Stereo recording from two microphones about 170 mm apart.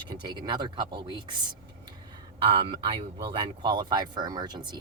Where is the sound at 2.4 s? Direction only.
30° right (ahead or behind).